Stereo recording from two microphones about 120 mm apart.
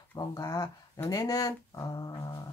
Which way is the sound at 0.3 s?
35° left (ahead or behind).